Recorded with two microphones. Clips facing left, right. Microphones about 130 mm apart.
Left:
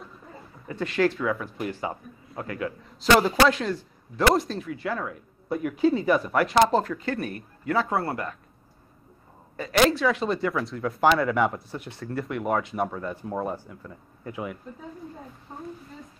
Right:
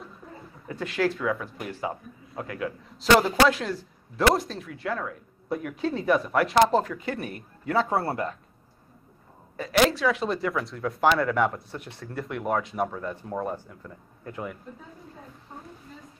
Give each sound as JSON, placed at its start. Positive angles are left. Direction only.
{"t": 0.7, "sound": "speech", "side_deg": 0}
{"t": 7.9, "sound": "speech", "side_deg": -25}
{"t": 9.6, "sound": "speech", "side_deg": 0}